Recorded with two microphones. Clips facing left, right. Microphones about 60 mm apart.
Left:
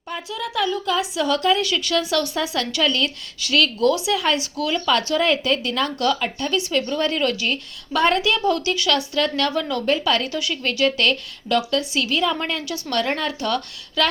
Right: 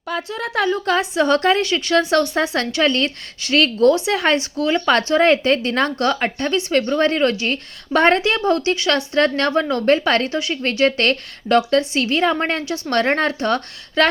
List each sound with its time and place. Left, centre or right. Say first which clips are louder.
0.2 s a woman's voice: right 2 dB; right
1.6 s a woman's voice: right 4 dB; right